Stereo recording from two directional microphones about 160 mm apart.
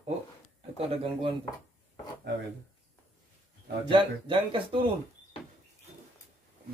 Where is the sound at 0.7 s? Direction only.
35° right (ahead or behind).